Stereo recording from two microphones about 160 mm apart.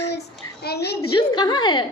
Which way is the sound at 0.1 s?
85° left.